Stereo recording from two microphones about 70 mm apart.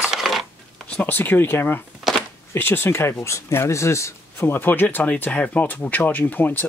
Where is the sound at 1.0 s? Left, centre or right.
Left.